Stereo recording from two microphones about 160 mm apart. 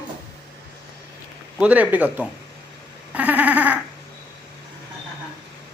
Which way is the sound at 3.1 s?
10° right (ahead or behind).